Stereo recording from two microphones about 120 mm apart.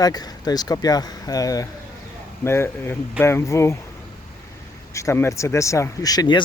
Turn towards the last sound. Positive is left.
turn(degrees=35)  # may be behind; listen again after turning